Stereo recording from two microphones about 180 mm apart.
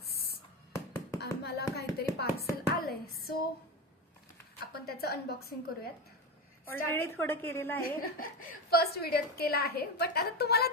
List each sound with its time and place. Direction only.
0.0 s a sound: 60° left (ahead or behind)
2.4 s hands: 60° left (ahead or behind)
4.7 s a woman's voice: 60° left (ahead or behind)
6.7 s a woman's voice: 10° left (ahead or behind)
7.8 s a woman's voice: 55° left (ahead or behind)